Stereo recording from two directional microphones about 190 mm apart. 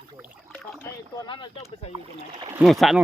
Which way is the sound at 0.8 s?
20° left (ahead or behind).